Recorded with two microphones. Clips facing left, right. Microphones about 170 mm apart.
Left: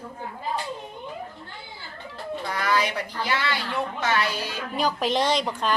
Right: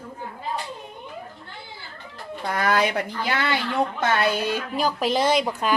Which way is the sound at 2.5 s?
55° right (ahead or behind).